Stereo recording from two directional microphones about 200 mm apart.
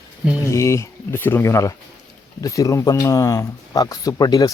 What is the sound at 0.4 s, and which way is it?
Speech, 15° left (ahead or behind).